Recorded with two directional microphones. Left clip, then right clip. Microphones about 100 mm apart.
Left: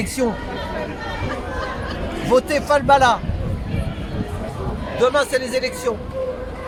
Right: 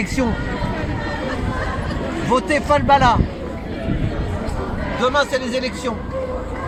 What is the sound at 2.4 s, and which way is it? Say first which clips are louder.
Speech: even; 20° left (ahead or behind).